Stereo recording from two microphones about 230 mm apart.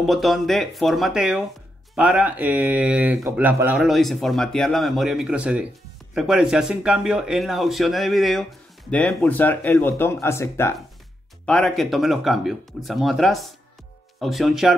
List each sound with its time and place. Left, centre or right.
0.0 s speech: centre